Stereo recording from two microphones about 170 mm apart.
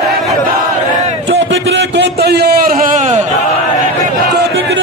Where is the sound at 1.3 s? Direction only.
90° right; by 3.2 s 45° right (ahead or behind).